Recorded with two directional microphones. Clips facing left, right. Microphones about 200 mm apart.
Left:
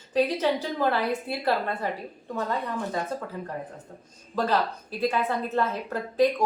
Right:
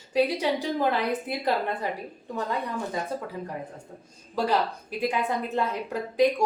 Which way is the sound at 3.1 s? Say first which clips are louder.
Even; 10° right (ahead or behind).